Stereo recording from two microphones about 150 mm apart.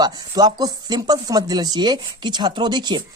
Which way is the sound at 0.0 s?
25° right (ahead or behind).